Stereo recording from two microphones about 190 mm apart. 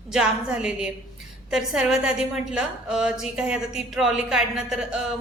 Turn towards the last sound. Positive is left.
turn(degrees=0)  # may be behind; listen again after turning